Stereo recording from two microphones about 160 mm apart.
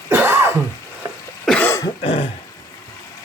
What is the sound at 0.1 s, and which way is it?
Throat clearing, 15° right (ahead or behind).